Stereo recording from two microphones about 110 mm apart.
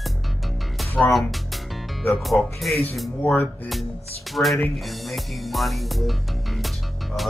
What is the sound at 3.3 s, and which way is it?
Speech, 15° left (ahead or behind).